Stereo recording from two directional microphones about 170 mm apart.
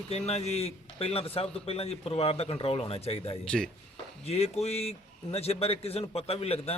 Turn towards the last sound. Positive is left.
turn(degrees=35)  # may be behind; listen again after turning